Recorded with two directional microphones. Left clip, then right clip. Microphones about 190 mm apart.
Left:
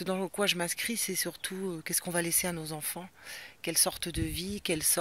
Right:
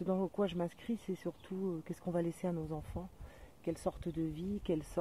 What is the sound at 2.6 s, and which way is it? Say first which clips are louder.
Speech: left 4 dB; 30° left (ahead or behind).